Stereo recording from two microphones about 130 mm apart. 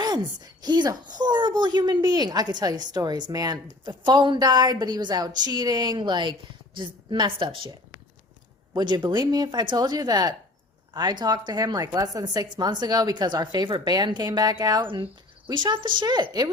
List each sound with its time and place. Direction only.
0.6 s a woman's voice: 35° right (ahead or behind)
8.7 s a woman's voice: 35° right (ahead or behind)